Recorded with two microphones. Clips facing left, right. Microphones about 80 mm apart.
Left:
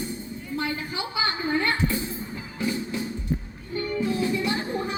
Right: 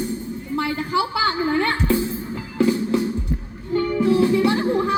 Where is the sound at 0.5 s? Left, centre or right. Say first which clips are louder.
Right 8 dB; right.